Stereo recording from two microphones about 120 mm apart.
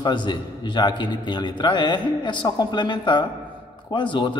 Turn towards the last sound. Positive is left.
turn(degrees=40)  # may be behind; listen again after turning